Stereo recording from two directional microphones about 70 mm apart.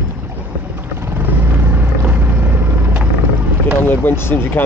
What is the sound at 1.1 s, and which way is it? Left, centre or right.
Vehicle, right.